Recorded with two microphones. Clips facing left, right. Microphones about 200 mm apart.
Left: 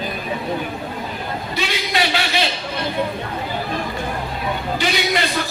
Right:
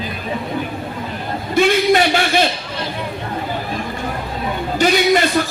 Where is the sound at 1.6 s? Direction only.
50° right (ahead or behind).